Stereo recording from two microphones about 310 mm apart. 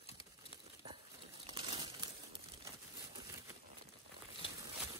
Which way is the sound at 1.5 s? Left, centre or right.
Centre.